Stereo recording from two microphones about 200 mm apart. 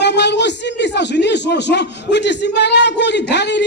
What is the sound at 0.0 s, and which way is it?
A man's voice, 60° left (ahead or behind).